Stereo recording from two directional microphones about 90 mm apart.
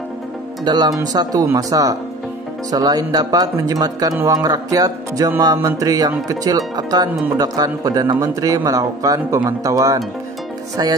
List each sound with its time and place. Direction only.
0.7 s speech: 50° right (ahead or behind)